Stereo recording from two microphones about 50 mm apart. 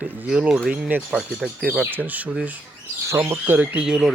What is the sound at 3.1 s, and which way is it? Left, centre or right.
Speech, right.